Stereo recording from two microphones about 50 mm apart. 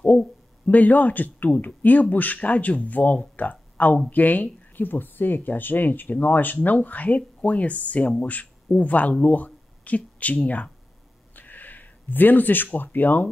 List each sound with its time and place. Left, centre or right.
0.7 s speech: left
11.3 s a sound: left
12.7 s speech: left